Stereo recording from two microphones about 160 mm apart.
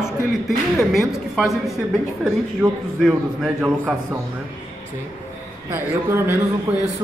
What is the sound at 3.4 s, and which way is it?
Speech, 5° right (ahead or behind).